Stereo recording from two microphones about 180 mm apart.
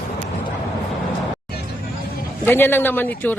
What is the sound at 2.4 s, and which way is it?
Speech, 10° left (ahead or behind).